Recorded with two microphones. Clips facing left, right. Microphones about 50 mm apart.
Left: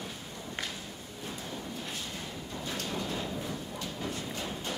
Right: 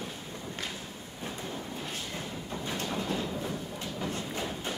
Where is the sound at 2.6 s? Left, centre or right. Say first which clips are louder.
Right 2 dB; right.